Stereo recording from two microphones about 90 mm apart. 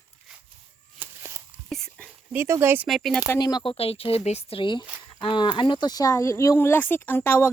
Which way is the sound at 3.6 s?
90° left.